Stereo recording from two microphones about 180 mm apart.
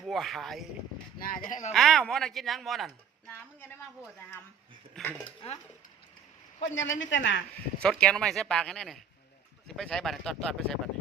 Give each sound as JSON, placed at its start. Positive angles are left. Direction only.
{"t": 0.0, "sound": "a woman's voice", "side_deg": 0}
{"t": 1.2, "sound": "speech", "side_deg": 50}
{"t": 1.7, "sound": "a woman's voice", "side_deg": 0}
{"t": 5.4, "sound": "stir", "side_deg": 35}
{"t": 6.6, "sound": "a woman's voice", "side_deg": 90}
{"t": 7.8, "sound": "a woman's voice", "side_deg": 5}